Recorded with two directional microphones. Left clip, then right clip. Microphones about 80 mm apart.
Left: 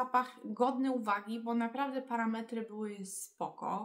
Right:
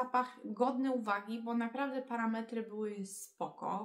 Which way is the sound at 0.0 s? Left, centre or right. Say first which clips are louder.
Left 2 dB; left.